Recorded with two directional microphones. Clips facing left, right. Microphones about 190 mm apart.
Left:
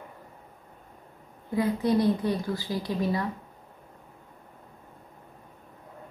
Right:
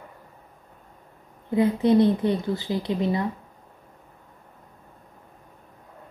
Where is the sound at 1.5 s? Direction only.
25° right (ahead or behind).